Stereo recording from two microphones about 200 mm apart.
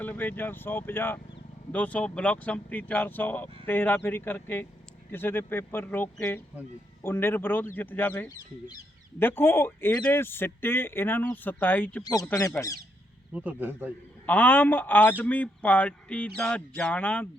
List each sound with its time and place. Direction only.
0.0 s speech: 10° left (ahead or behind)
13.3 s speech: 10° right (ahead or behind)
14.3 s speech: 10° left (ahead or behind)